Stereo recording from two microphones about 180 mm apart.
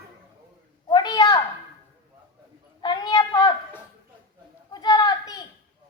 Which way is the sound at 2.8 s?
25° left (ahead or behind).